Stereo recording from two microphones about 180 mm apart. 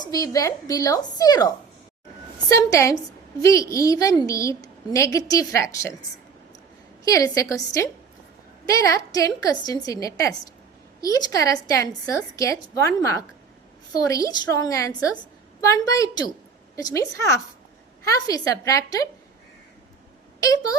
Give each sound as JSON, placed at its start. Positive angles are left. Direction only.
{"t": 0.0, "sound": "a woman's voice", "side_deg": 20}
{"t": 7.0, "sound": "a woman's voice", "side_deg": 20}
{"t": 20.4, "sound": "a woman's voice", "side_deg": 20}